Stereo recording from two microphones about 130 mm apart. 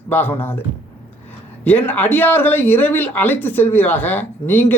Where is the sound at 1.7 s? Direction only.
15° left (ahead or behind).